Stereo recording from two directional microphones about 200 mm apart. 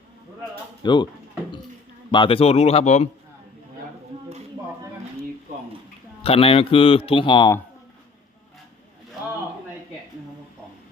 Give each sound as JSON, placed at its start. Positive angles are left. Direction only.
{"t": 0.8, "sound": "a man's voice", "side_deg": 20}
{"t": 2.0, "sound": "a man's voice", "side_deg": 25}
{"t": 6.2, "sound": "a man's voice", "side_deg": 30}